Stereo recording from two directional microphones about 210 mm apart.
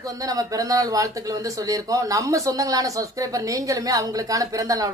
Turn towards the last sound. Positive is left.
turn(degrees=-15)  # may be behind; listen again after turning